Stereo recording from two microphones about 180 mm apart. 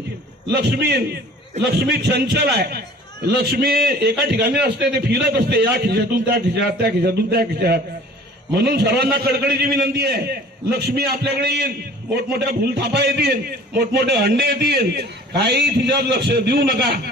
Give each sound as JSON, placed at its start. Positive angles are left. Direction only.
{"t": 0.5, "sound": "a man's voice", "side_deg": -65}